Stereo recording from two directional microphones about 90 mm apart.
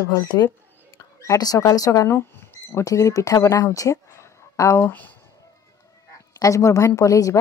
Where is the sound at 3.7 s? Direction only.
35° left (ahead or behind).